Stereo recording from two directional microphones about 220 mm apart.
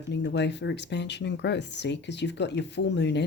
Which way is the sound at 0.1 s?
50° left (ahead or behind).